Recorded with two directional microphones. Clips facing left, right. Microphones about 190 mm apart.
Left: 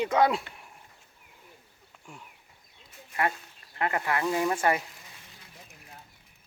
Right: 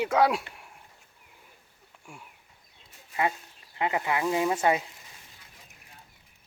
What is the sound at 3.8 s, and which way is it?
Speech, 15° right (ahead or behind).